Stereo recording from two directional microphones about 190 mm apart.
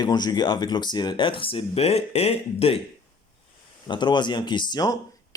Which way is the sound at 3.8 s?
25° left (ahead or behind).